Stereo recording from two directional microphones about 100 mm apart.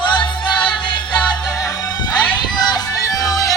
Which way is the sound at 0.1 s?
55° left (ahead or behind).